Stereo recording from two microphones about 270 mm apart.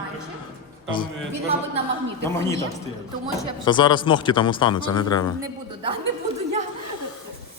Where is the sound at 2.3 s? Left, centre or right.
Centre.